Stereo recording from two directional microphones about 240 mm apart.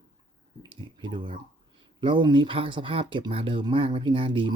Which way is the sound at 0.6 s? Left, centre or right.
Centre.